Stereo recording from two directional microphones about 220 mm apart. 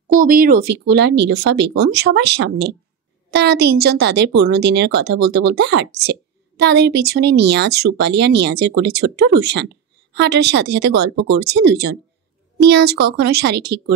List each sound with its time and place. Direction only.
0.1 s a woman's voice: 40° right (ahead or behind)